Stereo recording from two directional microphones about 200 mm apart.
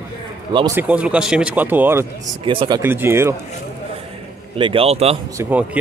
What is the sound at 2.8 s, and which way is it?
Speech, 10° right (ahead or behind).